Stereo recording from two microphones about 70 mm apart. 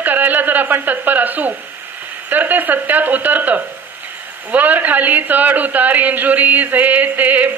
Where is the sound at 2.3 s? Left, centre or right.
Right.